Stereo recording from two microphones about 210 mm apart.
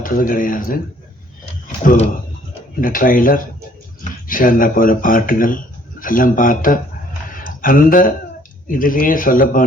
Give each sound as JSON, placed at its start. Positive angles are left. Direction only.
{"t": 0.0, "sound": "speech", "side_deg": 40}
{"t": 1.8, "sound": "speech", "side_deg": 40}
{"t": 7.3, "sound": "a sound", "side_deg": 40}
{"t": 8.6, "sound": "speech", "side_deg": 40}